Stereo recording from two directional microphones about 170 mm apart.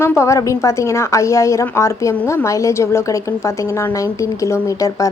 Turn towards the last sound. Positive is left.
turn(degrees=20)  # may be behind; listen again after turning